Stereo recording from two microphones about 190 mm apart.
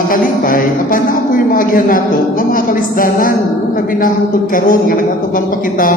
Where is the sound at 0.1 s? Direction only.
45° left (ahead or behind).